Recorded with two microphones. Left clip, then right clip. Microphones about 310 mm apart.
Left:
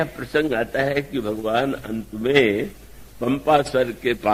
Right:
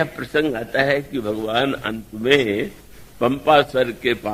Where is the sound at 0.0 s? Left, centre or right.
Right.